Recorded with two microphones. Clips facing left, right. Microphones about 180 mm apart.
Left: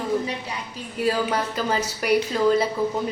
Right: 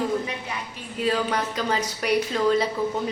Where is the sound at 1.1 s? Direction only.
5° left (ahead or behind).